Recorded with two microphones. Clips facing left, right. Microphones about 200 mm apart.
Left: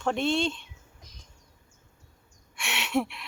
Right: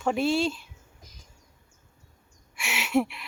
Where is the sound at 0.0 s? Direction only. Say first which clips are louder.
Right 2 dB; 5° right (ahead or behind).